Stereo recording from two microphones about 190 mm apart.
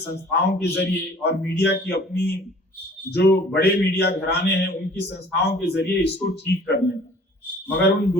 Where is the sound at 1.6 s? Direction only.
60° left (ahead or behind).